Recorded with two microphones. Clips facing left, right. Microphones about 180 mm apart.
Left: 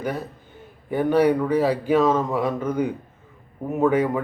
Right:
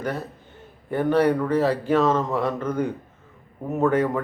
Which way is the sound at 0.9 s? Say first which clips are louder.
Left 1 dB; 10° left (ahead or behind).